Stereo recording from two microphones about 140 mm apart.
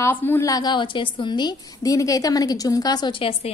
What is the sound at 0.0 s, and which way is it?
A woman's voice, 15° left (ahead or behind).